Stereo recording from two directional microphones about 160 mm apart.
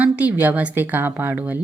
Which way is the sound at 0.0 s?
10° right (ahead or behind).